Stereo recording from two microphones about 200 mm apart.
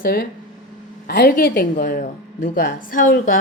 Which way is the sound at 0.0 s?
50° left (ahead or behind).